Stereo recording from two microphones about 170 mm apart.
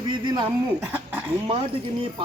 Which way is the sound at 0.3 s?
25° right (ahead or behind).